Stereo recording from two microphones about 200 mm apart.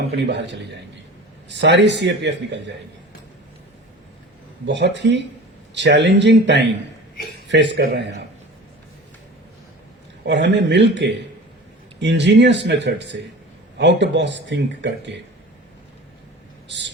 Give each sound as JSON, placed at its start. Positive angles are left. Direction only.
{"t": 0.2, "sound": "speech", "side_deg": -60}
{"t": 4.6, "sound": "speech", "side_deg": -60}
{"t": 10.2, "sound": "speech", "side_deg": -60}